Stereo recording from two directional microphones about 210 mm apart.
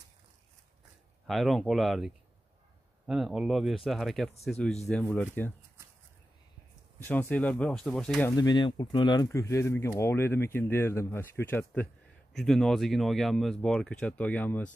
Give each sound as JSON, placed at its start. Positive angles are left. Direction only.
{"t": 1.2, "sound": "speech", "side_deg": 0}
{"t": 7.0, "sound": "speech", "side_deg": 10}
{"t": 8.3, "sound": "speech", "side_deg": 20}